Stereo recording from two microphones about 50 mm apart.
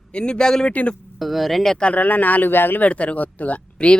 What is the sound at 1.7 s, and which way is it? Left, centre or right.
Speech, left.